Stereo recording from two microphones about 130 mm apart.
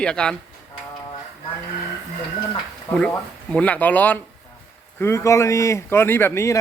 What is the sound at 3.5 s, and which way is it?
Speech, 10° left (ahead or behind).